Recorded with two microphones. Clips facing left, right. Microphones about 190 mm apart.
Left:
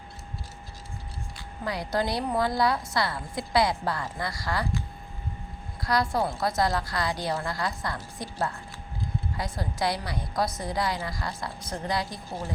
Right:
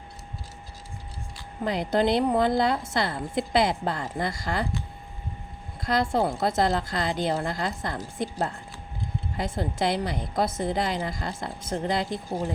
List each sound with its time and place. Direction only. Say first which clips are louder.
1.6 s a woman's voice: right 5 dB; 20° right (ahead or behind)
5.8 s a woman's voice: right 2 dB; 25° right (ahead or behind)